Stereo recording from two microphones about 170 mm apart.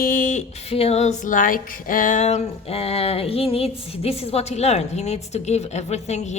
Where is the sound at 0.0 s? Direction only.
55° left (ahead or behind).